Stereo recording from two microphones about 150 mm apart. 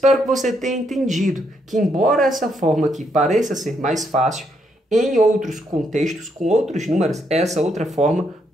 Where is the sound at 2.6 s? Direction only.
45° right (ahead or behind).